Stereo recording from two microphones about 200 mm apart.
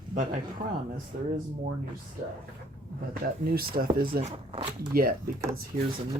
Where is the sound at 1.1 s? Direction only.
40° right (ahead or behind).